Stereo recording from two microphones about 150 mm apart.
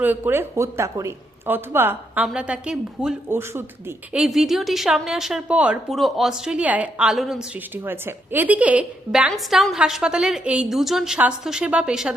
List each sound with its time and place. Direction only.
0.0 s speech: 10° right (ahead or behind)
3.2 s speech: 15° right (ahead or behind)
4.2 s a woman's voice: centre (ahead or behind)